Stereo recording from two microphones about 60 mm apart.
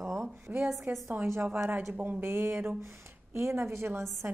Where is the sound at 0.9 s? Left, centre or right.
Right.